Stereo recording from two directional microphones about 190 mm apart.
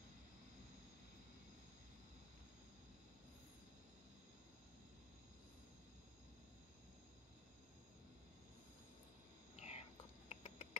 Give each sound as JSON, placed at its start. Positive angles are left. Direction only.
{"t": 9.6, "sound": "whispering", "side_deg": 35}